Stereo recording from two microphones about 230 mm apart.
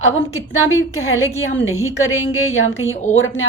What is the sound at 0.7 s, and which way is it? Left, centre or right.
A woman's voice, left.